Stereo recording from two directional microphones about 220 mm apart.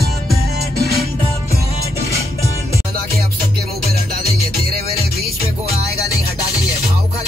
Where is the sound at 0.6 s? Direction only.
45° right (ahead or behind).